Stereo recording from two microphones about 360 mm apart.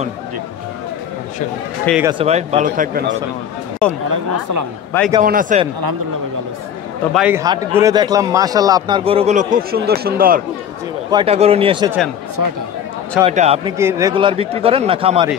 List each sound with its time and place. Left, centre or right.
1.9 s a man's voice: centre; by 3.2 s right
4.1 s speech: right
5.2 s speech: right
7.2 s a man's voice: centre
13.2 s a man's voice: centre